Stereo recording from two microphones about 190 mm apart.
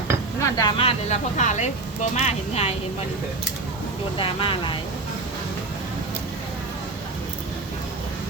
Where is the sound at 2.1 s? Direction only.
35° left (ahead or behind).